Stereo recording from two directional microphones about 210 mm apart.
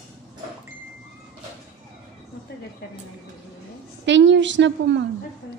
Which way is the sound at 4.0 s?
60° right (ahead or behind).